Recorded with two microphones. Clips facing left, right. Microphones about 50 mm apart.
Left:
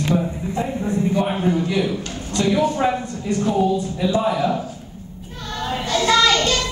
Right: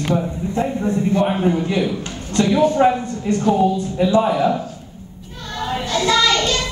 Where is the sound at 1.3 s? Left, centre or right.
Centre.